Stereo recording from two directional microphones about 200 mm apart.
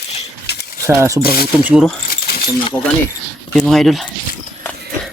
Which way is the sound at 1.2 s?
50° left (ahead or behind).